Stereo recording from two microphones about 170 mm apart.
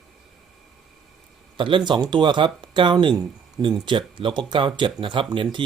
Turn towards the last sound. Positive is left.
turn(degrees=-30)  # may be behind; listen again after turning